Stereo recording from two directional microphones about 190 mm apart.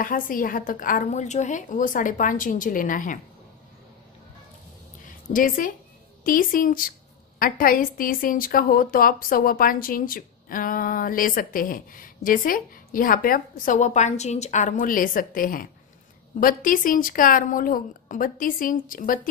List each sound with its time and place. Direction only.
0.0 s a woman's voice: 45° left (ahead or behind)
5.3 s a woman's voice: 45° left (ahead or behind)